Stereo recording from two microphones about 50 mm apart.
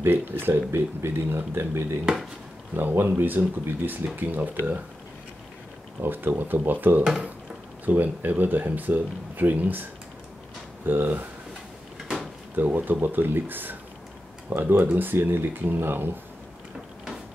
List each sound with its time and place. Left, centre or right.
0.0 s speech: right
2.7 s speech: right
5.9 s speech: right
10.9 s speech: right
12.5 s speech: right